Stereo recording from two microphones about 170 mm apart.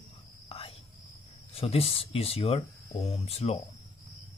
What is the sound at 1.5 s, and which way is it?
Speech, 35° left (ahead or behind).